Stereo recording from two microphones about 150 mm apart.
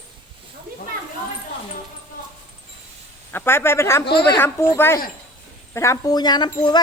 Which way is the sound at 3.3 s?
15° left (ahead or behind).